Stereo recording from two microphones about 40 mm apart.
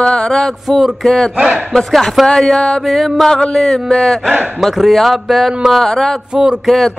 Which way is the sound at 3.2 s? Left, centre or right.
Centre.